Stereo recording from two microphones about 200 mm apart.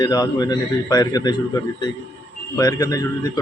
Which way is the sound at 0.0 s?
20° left (ahead or behind).